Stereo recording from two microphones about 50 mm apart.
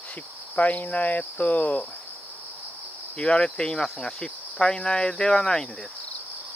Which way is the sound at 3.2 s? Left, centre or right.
Centre.